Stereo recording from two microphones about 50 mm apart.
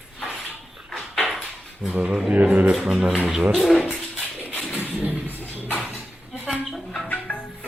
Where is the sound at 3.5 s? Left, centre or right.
Centre.